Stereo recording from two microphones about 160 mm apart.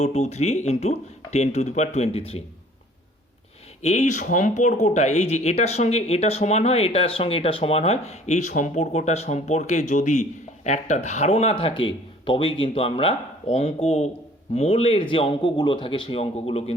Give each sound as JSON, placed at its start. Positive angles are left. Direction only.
{"t": 0.0, "sound": "speech", "side_deg": 40}
{"t": 3.8, "sound": "speech", "side_deg": 45}